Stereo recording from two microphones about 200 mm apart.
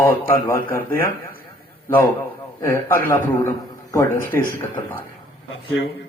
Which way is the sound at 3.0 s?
10° left (ahead or behind).